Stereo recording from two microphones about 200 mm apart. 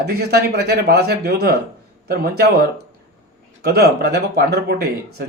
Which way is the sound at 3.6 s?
55° right (ahead or behind).